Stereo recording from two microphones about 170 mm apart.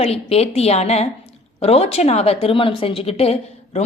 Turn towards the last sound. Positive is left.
turn(degrees=35)  # may be behind; listen again after turning